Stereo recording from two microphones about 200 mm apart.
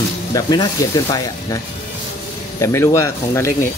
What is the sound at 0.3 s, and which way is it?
Speech, 20° left (ahead or behind).